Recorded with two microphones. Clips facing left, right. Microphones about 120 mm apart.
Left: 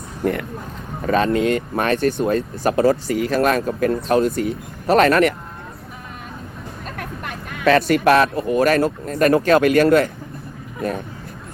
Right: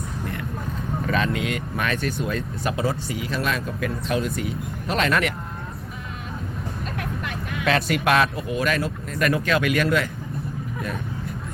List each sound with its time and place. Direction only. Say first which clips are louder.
1.0 s speech: left 8 dB; 40° left (ahead or behind)
6.9 s a sound: left 1 dB; 45° left (ahead or behind)
9.0 s speech: left 7 dB; 40° left (ahead or behind)